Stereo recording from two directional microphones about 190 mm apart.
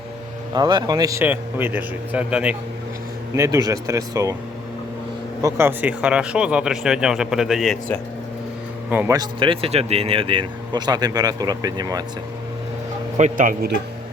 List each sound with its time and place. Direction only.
0.5 s a man's voice: 20° right (ahead or behind)
5.4 s speech: 15° right (ahead or behind); by 7.9 s centre (ahead or behind)
8.9 s speech: 10° right (ahead or behind)
13.1 s speech: 40° right (ahead or behind)